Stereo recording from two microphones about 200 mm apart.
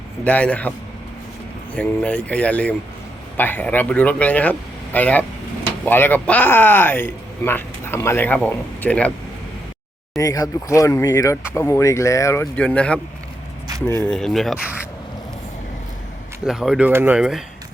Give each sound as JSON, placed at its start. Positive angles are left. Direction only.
{"t": 0.3, "sound": "speech", "side_deg": 5}
{"t": 1.7, "sound": "speech", "side_deg": 5}
{"t": 10.2, "sound": "speech", "side_deg": 15}
{"t": 16.5, "sound": "speech", "side_deg": -5}